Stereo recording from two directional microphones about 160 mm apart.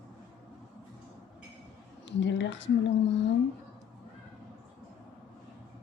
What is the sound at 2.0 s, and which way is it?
Speech, 90° left.